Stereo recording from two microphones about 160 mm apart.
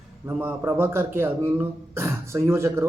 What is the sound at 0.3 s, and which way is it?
A man's voice, 10° right (ahead or behind).